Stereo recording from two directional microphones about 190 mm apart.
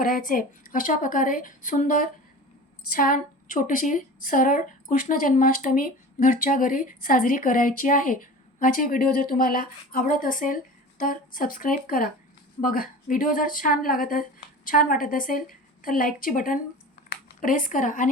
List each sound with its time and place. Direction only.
0.0 s a woman's voice: 45° left (ahead or behind)